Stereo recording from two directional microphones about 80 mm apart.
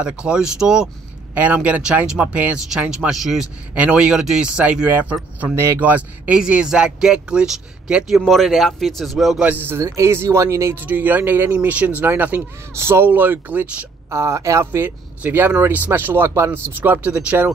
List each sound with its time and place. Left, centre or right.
0.0 s speech: centre
1.3 s speech: centre
2.9 s speech: centre
3.7 s speech: centre
9.4 s speech: right
10.8 s speech: right
14.1 s speech: right